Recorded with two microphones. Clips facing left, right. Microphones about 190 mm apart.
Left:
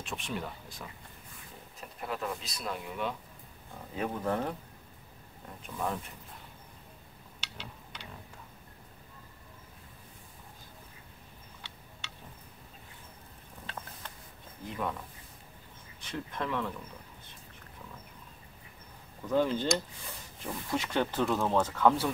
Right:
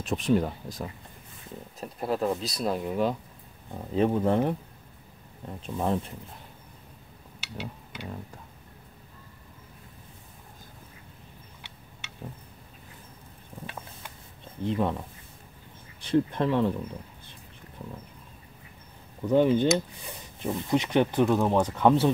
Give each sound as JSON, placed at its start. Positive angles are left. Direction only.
{"t": 0.0, "sound": "speech", "side_deg": -40}
{"t": 3.9, "sound": "speech", "side_deg": -25}
{"t": 5.6, "sound": "speech", "side_deg": -30}
{"t": 7.3, "sound": "a sound", "side_deg": -5}
{"t": 14.6, "sound": "speech", "side_deg": -30}
{"t": 19.2, "sound": "speech", "side_deg": -20}